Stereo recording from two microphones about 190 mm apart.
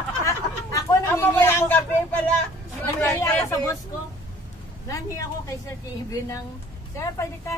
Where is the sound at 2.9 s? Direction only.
15° left (ahead or behind).